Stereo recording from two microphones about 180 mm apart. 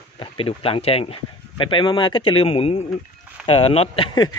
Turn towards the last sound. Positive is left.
turn(degrees=25)  # may be behind; listen again after turning